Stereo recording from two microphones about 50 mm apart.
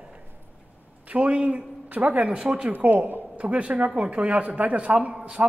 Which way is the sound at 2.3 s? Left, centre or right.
Centre.